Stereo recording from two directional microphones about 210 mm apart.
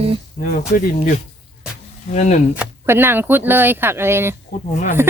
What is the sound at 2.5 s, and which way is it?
Speech, 10° right (ahead or behind).